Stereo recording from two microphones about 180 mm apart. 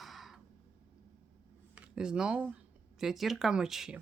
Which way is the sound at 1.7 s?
5° right (ahead or behind).